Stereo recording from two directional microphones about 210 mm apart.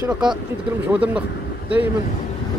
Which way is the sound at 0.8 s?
5° right (ahead or behind).